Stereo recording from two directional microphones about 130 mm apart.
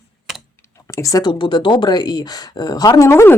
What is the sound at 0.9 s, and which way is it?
Speech, 25° left (ahead or behind).